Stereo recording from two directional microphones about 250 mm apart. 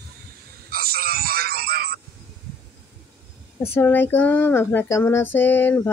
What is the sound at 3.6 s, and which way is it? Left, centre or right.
Child singing, centre.